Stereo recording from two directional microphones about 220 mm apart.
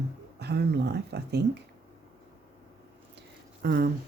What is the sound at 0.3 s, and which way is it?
Speech, 50° right (ahead or behind).